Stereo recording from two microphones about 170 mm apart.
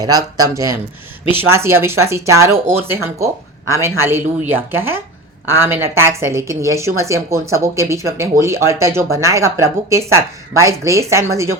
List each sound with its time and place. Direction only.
0.0 s a woman's voice: 20° right (ahead or behind)